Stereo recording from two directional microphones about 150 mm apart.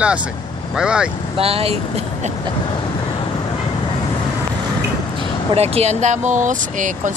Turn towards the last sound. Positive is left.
turn(degrees=-60)  # may be behind; listen again after turning